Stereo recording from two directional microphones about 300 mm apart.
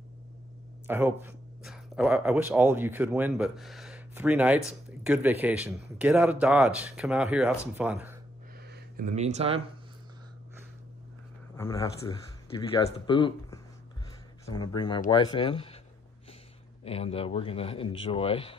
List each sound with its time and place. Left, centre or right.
0.8 s a man's voice: centre
8.9 s speech: right
11.5 s speech: centre
16.8 s a man's voice: centre